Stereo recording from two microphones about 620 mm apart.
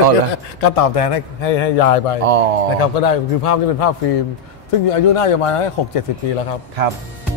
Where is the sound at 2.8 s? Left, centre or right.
Left.